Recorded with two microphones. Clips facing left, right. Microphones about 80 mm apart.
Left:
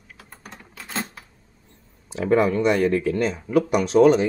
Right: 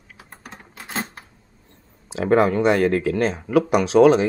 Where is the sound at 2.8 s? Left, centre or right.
Right.